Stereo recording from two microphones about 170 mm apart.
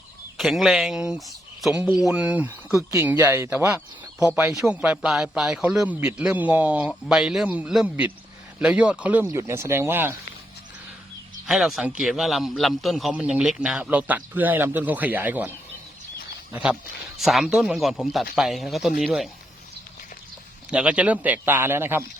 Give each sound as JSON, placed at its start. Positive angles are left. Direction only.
{"t": 0.3, "sound": "a man's voice", "side_deg": 0}
{"t": 11.4, "sound": "a man's voice", "side_deg": 0}
{"t": 17.2, "sound": "a man's voice", "side_deg": 0}
{"t": 20.7, "sound": "a man's voice", "side_deg": -5}